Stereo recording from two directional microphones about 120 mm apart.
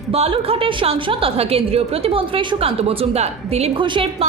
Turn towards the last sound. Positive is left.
turn(degrees=-45)  # may be behind; listen again after turning